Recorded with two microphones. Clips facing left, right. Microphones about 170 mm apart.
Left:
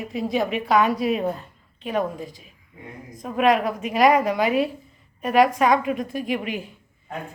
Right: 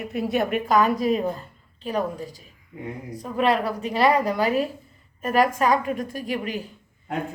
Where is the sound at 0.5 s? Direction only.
40° right (ahead or behind).